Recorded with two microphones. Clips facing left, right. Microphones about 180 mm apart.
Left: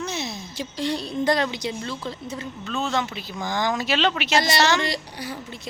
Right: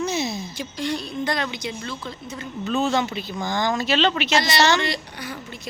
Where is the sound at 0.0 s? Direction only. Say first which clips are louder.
Right 5 dB; 5° right (ahead or behind).